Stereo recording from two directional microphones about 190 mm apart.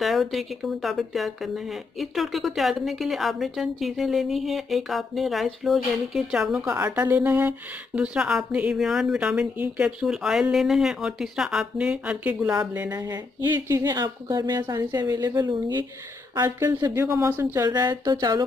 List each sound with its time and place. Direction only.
0.0 s speech: centre (ahead or behind); by 18.4 s 20° right (ahead or behind)